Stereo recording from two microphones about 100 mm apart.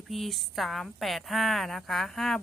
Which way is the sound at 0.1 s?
Centre (ahead or behind).